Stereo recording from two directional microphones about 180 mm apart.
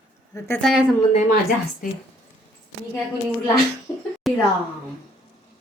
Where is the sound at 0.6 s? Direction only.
Centre (ahead or behind).